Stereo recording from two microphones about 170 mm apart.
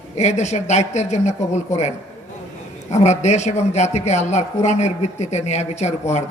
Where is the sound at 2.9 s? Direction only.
40° left (ahead or behind).